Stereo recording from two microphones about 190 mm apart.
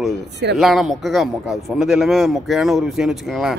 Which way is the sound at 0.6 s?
Centre (ahead or behind).